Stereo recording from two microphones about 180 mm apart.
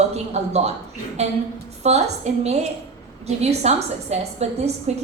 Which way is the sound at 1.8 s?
35° right (ahead or behind).